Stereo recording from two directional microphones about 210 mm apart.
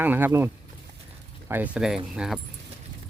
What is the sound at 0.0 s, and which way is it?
Speech, 10° right (ahead or behind).